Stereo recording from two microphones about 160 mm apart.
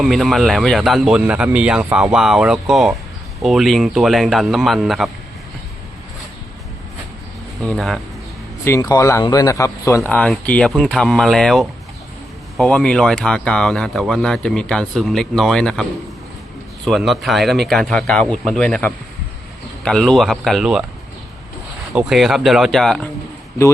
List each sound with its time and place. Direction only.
0.0 s speech: centre (ahead or behind)
7.6 s speech: 5° left (ahead or behind)
8.6 s speech: 20° left (ahead or behind); by 20.8 s 5° right (ahead or behind)
21.9 s speech: centre (ahead or behind)